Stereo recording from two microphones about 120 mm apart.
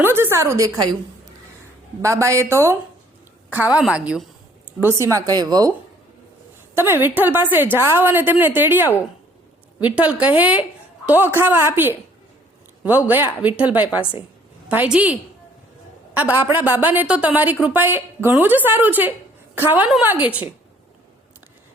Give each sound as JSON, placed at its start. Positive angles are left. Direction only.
{"t": 0.0, "sound": "speech", "side_deg": -20}
{"t": 2.0, "sound": "speech", "side_deg": -25}
{"t": 3.5, "sound": "a woman's voice", "side_deg": -10}
{"t": 4.8, "sound": "speech", "side_deg": -20}
{"t": 6.7, "sound": "a woman's voice", "side_deg": -20}